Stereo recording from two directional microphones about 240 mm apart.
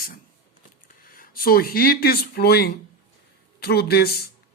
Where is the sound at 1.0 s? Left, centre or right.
Left.